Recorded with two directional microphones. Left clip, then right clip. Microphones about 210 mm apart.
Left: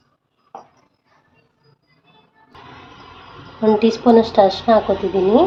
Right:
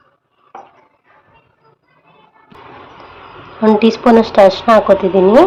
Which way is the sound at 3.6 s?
20° right (ahead or behind).